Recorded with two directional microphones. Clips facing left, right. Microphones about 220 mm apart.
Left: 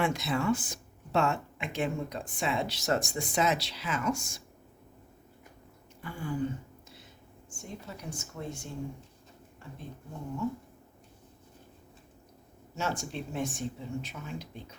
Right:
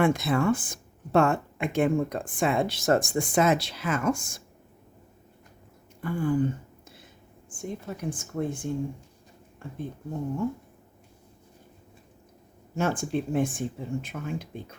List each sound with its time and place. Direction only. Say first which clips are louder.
0.0 s speech: right 6 dB; 50° right (ahead or behind)
6.0 s speech: right 10 dB; 50° right (ahead or behind)
7.5 s speech: right 8 dB; 50° right (ahead or behind)
12.7 s speech: right 8 dB; 55° right (ahead or behind)